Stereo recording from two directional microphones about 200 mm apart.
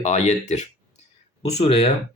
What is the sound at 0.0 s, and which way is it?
Speech, 35° left (ahead or behind).